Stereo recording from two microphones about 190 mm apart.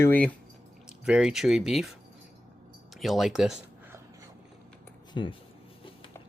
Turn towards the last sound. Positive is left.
turn(degrees=25)  # may be behind; listen again after turning